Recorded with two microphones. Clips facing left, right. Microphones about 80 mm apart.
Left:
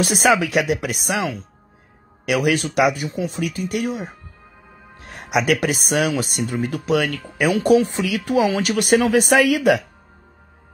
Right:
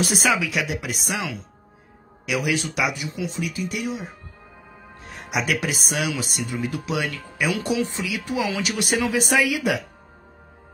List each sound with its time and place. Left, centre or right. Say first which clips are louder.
0.0 s speech: left 5 dB; left
4.9 s music: left 6 dB; left
5.5 s speech: left 6 dB; left